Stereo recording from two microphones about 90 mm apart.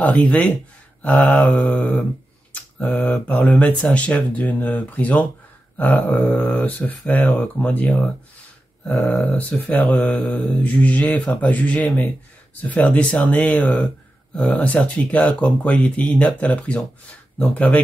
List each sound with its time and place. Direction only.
0.0 s speech: 15° left (ahead or behind)